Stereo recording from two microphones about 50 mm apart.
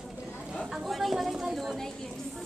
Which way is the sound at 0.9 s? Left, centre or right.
Centre.